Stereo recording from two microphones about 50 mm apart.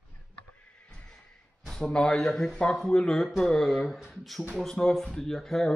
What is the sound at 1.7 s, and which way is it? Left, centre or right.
Speech, centre.